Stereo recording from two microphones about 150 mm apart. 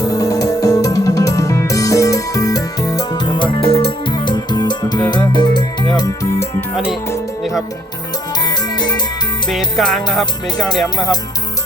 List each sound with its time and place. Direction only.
0.1 s music: 20° left (ahead or behind)
6.0 s music: 20° left (ahead or behind)
6.7 s music: 5° right (ahead or behind)
8.4 s music: 30° left (ahead or behind)
9.5 s music: centre (ahead or behind)
10.8 s speech: 25° left (ahead or behind)